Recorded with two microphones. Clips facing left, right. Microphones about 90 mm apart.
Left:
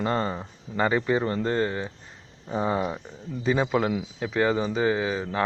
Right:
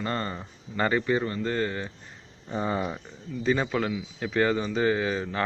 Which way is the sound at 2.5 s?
10° left (ahead or behind).